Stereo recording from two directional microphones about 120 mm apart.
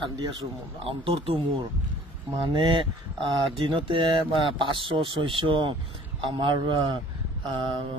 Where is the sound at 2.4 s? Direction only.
40° right (ahead or behind).